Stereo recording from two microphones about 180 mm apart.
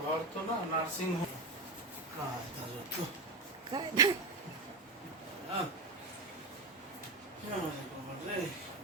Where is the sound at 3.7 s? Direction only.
20° right (ahead or behind).